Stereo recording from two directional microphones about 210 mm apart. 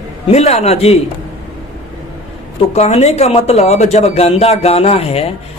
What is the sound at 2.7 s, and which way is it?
Speech, 30° left (ahead or behind).